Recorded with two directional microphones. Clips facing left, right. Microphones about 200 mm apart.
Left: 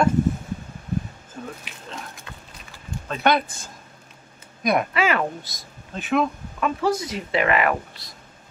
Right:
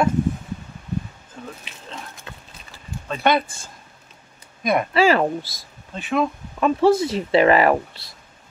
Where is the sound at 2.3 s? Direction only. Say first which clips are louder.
Right 2 dB; 30° right (ahead or behind).